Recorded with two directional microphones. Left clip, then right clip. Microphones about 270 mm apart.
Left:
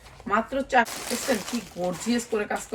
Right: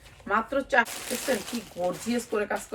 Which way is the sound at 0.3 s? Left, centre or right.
Centre.